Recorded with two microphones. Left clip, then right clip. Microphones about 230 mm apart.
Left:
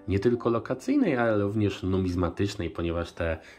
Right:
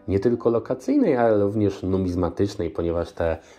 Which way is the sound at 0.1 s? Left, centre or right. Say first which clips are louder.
Right 5 dB; left.